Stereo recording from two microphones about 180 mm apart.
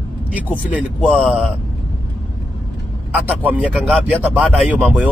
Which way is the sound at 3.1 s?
10° right (ahead or behind).